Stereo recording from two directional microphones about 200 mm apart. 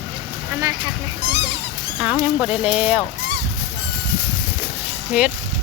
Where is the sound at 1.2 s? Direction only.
60° right (ahead or behind).